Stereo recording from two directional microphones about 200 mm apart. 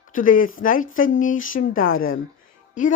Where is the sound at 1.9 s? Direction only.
90° left.